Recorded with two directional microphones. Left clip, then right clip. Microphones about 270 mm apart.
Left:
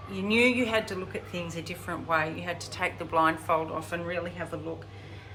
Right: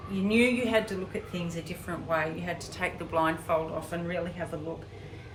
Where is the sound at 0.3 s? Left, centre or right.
Centre.